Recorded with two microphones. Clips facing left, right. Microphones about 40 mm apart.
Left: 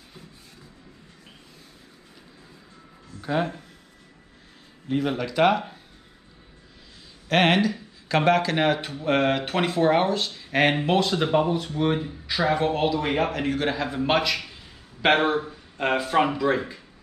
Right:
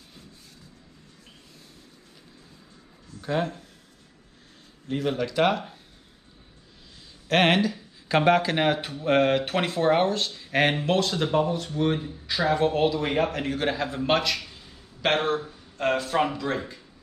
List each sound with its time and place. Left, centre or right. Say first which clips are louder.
3.2 s speech: left 1 dB; centre
4.8 s a man's voice: left 1 dB; centre
7.2 s a man's voice: left 1 dB; centre
12.3 s a man's voice: even; centre